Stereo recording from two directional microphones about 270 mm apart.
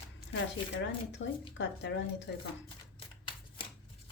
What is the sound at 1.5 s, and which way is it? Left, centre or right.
Speech, left.